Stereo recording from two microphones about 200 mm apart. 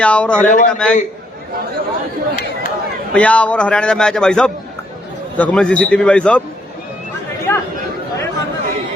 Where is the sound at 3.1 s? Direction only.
5° left (ahead or behind).